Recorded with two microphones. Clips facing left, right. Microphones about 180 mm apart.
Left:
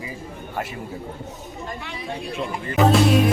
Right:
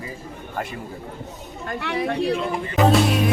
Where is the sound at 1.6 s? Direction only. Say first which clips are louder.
Right 9 dB; 65° right (ahead or behind).